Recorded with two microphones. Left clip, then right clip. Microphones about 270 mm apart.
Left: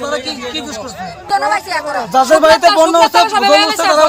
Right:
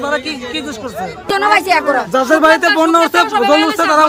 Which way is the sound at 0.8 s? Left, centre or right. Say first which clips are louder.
Right 3 dB; right.